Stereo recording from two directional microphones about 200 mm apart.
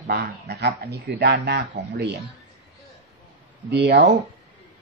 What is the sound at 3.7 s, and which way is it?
Speech, 55° right (ahead or behind).